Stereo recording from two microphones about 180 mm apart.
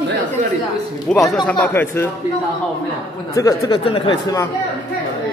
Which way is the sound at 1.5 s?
10° left (ahead or behind).